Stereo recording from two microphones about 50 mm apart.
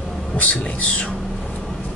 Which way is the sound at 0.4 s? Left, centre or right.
Left.